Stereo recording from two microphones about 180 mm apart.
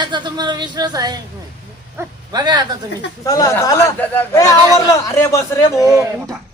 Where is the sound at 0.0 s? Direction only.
25° right (ahead or behind).